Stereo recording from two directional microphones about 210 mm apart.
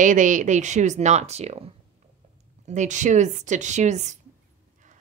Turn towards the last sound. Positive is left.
turn(degrees=-35)  # may be behind; listen again after turning